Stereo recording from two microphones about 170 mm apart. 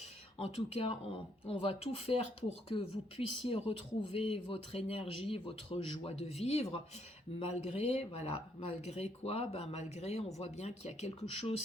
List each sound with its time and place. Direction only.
0.3 s speech: 35° left (ahead or behind)